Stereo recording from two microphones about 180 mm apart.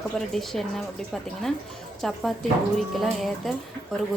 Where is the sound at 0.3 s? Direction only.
Centre (ahead or behind).